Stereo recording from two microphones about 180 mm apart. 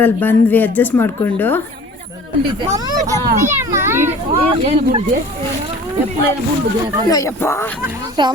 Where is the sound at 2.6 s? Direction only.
20° right (ahead or behind).